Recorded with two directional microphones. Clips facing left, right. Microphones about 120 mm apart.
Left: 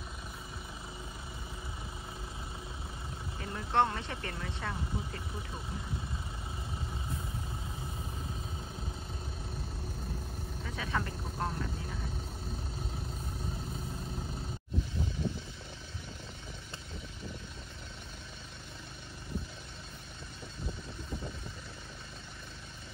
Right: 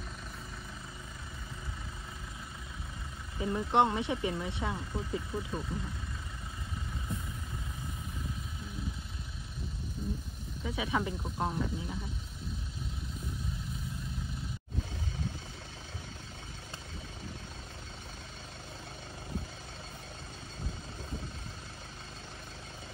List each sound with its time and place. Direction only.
3.3 s speech: 15° right (ahead or behind)
10.6 s speech: 10° right (ahead or behind)